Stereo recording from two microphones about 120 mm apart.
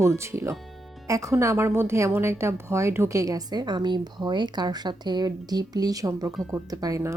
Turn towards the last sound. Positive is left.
turn(degrees=-25)  # may be behind; listen again after turning